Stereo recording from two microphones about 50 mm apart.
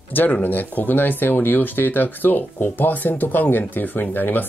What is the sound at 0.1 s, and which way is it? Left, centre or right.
Speech, left.